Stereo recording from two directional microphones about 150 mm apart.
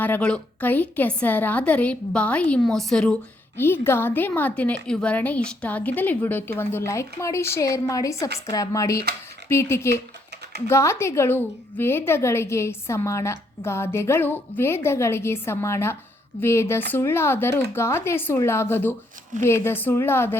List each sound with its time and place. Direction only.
0.0 s a woman's voice: 10° left (ahead or behind)